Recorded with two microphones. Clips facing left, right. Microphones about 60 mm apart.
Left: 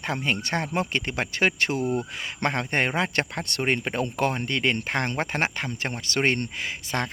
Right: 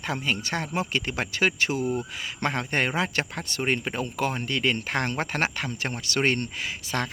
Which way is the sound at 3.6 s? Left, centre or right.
Left.